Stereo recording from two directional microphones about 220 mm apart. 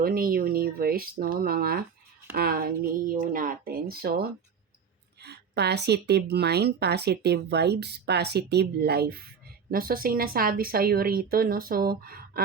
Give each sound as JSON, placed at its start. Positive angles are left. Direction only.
{"t": 0.0, "sound": "speech", "side_deg": -40}